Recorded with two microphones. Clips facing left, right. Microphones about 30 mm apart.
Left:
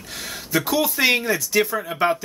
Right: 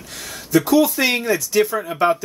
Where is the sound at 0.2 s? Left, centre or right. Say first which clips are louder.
Right 5 dB; centre.